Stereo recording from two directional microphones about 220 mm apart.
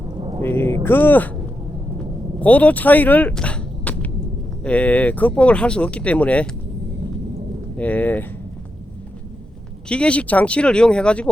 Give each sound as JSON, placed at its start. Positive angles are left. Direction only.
{"t": 0.2, "sound": "a sound", "side_deg": -25}
{"t": 0.4, "sound": "speech", "side_deg": 10}
{"t": 2.4, "sound": "speech", "side_deg": 5}
{"t": 7.8, "sound": "speech", "side_deg": 5}
{"t": 9.9, "sound": "speech", "side_deg": 5}